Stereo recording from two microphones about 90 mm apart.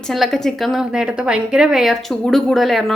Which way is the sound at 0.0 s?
Centre (ahead or behind).